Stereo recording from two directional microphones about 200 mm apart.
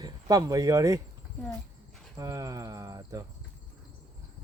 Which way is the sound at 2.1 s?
20° right (ahead or behind).